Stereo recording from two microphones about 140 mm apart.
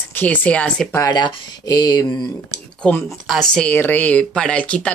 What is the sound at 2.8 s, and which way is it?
Speech, 15° left (ahead or behind).